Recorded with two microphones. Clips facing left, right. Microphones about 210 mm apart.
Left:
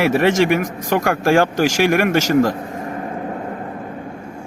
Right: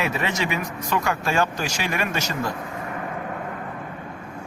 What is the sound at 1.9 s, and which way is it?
Speech, 60° left (ahead or behind).